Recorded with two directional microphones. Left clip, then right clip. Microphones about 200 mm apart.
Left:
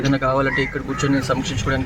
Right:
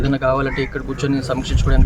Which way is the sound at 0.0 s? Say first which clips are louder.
Right 1 dB; 20° right (ahead or behind).